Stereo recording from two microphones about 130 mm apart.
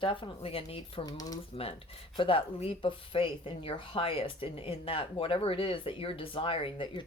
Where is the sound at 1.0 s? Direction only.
30° left (ahead or behind).